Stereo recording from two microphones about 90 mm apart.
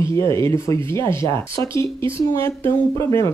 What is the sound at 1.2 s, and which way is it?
Speech, 70° right (ahead or behind).